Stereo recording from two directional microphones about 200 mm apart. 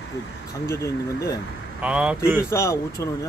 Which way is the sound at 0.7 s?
15° left (ahead or behind).